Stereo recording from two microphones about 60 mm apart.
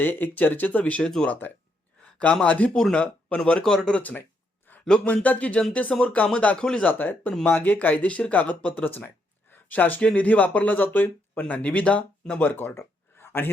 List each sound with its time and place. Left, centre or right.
0.0 s speech: left
1.0 s speech: centre
1.3 s speech: left
2.1 s speech: left
3.6 s speech: centre
3.9 s speech: left
4.2 s a sound: left
5.0 s speech: left
12.5 s speech: left
12.7 s a sound: left